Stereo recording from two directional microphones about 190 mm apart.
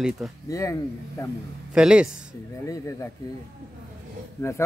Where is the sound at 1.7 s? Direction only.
5° right (ahead or behind).